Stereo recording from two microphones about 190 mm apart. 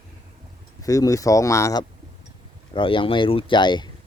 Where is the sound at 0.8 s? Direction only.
20° left (ahead or behind).